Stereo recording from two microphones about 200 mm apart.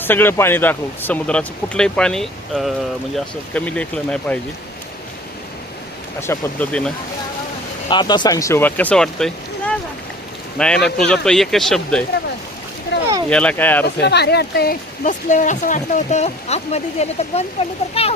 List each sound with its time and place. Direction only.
0.0 s speech: 10° left (ahead or behind)
6.2 s speech: 10° left (ahead or behind)
7.9 s speech: 20° left (ahead or behind); by 12.0 s 5° left (ahead or behind)
13.3 s speech: 5° left (ahead or behind)
14.0 s speech: 55° left (ahead or behind); by 18.1 s 30° left (ahead or behind)